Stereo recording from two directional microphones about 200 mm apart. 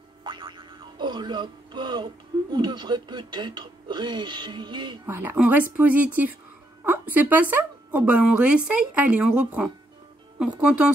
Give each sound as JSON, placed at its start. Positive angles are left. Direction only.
{"t": 0.2, "sound": "music", "side_deg": -20}
{"t": 2.5, "sound": "speech", "side_deg": -20}
{"t": 5.0, "sound": "a woman's voice", "side_deg": -10}